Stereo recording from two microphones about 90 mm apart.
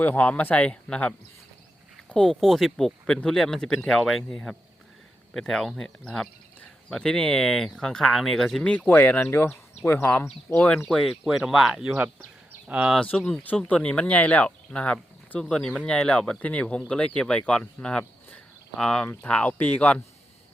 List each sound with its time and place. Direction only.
0.0 s speech: 20° left (ahead or behind)
8.9 s speech: 20° left (ahead or behind)
10.8 s speech: 5° left (ahead or behind)
12.6 s speech: 15° right (ahead or behind)
13.0 s speech: 10° left (ahead or behind)